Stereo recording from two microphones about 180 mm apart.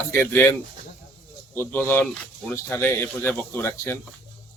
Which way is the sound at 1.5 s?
10° left (ahead or behind).